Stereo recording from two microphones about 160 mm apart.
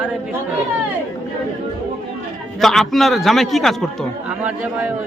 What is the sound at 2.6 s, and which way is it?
A man's voice, centre (ahead or behind).